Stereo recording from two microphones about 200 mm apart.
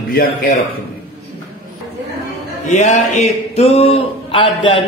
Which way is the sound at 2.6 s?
35° left (ahead or behind).